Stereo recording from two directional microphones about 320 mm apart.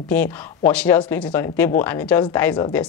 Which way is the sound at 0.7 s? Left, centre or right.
Centre.